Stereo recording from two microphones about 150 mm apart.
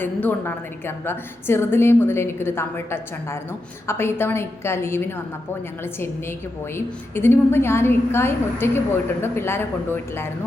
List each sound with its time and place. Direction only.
0.0 s a woman's voice: 10° left (ahead or behind)